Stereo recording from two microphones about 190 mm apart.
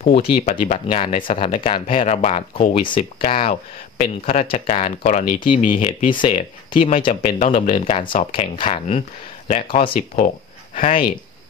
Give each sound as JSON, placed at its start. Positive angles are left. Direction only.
{"t": 0.1, "sound": "speech", "side_deg": 35}